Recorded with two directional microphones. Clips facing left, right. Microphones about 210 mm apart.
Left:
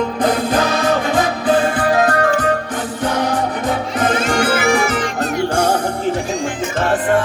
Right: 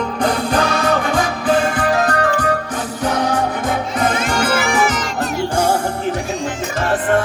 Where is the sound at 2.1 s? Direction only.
25° left (ahead or behind).